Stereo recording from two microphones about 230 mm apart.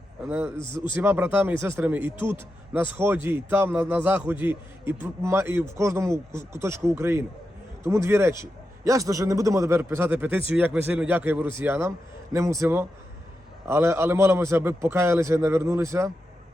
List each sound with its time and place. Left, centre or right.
0.3 s a man's voice: centre
0.5 s a man's voice: centre
1.0 s a man's voice: centre
3.2 s a man's voice: centre